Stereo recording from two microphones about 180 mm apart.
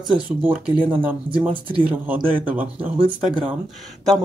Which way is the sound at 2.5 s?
10° right (ahead or behind).